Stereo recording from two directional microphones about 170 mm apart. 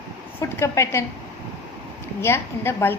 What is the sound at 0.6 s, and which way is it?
Speech, 15° left (ahead or behind).